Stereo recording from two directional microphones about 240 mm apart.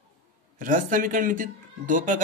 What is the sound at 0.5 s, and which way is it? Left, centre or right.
Speech, right.